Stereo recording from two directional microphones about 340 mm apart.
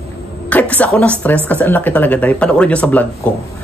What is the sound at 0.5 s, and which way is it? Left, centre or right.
Music, centre.